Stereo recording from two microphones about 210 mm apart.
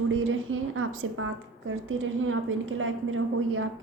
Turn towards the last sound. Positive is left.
turn(degrees=-75)  # may be behind; listen again after turning